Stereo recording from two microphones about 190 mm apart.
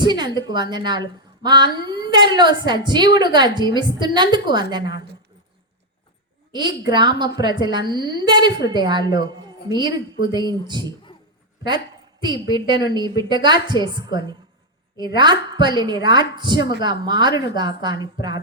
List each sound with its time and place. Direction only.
0.1 s a woman's voice: 20° right (ahead or behind)
6.5 s a woman's voice: 25° right (ahead or behind)
12.2 s a woman's voice: 20° right (ahead or behind)